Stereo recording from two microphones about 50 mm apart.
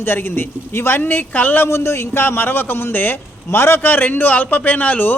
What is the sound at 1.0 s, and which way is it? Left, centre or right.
Speech, left.